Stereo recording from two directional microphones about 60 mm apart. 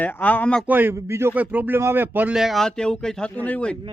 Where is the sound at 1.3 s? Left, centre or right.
Right.